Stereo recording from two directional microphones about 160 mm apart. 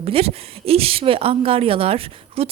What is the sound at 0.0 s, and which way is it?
A woman's voice, 40° right (ahead or behind).